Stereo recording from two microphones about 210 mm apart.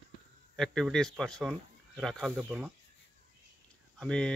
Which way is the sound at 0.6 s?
Centre (ahead or behind).